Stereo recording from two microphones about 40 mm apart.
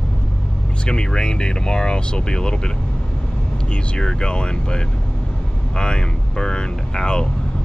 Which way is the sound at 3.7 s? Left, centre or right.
Left.